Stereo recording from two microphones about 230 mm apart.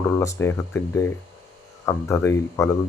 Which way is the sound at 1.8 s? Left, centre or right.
Centre.